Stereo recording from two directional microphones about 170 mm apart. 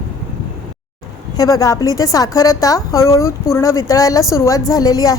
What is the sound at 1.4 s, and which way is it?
A woman's voice, 20° left (ahead or behind).